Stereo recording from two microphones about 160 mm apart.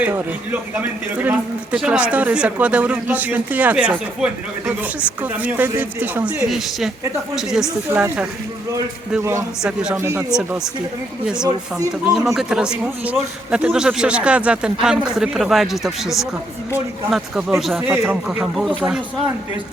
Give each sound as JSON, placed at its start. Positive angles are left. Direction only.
{"t": 0.0, "sound": "a man's voice", "side_deg": -15}
{"t": 6.5, "sound": "a man's voice", "side_deg": 0}
{"t": 9.6, "sound": "a man's voice", "side_deg": -5}
{"t": 10.0, "sound": "a man's voice", "side_deg": -15}
{"t": 10.2, "sound": "a man's voice", "side_deg": -5}
{"t": 12.1, "sound": "a man's voice", "side_deg": 0}